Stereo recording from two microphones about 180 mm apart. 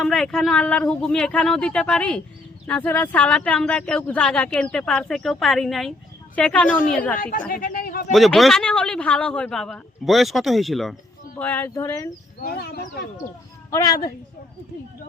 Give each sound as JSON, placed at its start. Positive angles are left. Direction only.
{"t": 0.0, "sound": "speech", "side_deg": 0}
{"t": 7.2, "sound": "a woman's voice", "side_deg": 45}
{"t": 7.5, "sound": "a sound", "side_deg": 55}
{"t": 8.1, "sound": "speech", "side_deg": 0}
{"t": 12.4, "sound": "speech", "side_deg": 60}
{"t": 13.7, "sound": "a woman's voice", "side_deg": 20}